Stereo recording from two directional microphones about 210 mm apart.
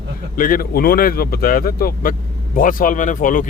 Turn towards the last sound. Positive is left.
turn(degrees=40)  # may be behind; listen again after turning